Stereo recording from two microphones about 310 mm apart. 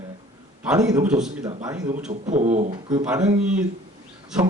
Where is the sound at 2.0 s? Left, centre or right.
Right.